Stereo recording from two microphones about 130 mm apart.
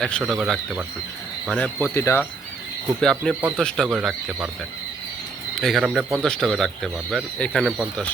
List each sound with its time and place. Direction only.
0.0 s speech: centre (ahead or behind)
1.8 s speech: 20° left (ahead or behind)
3.0 s speech: 5° left (ahead or behind)
5.5 s speech: centre (ahead or behind)